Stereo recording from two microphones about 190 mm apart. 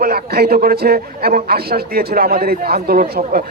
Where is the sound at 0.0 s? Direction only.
55° right (ahead or behind).